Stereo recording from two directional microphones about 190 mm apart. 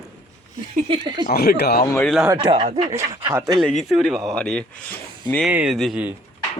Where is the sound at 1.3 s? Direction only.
55° left (ahead or behind).